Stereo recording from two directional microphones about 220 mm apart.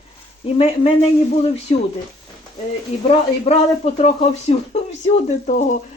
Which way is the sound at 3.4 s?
30° left (ahead or behind).